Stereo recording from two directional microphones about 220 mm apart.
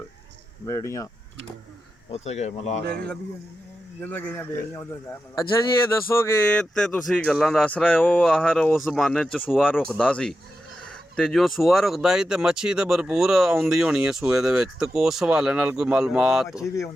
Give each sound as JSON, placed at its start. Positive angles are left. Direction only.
{"t": 0.6, "sound": "speech", "side_deg": 15}
{"t": 2.0, "sound": "speech", "side_deg": 30}
{"t": 2.8, "sound": "a man's voice", "side_deg": -45}
{"t": 4.0, "sound": "speech", "side_deg": 10}
{"t": 6.1, "sound": "speech", "side_deg": 10}